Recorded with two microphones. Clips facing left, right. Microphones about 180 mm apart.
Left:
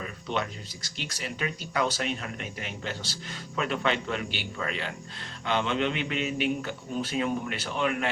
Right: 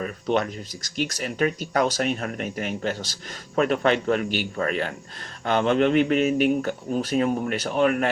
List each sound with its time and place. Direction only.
0.0 s speech: 50° right (ahead or behind)